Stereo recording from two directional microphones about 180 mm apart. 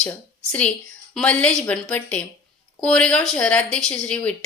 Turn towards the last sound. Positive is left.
turn(degrees=5)  # may be behind; listen again after turning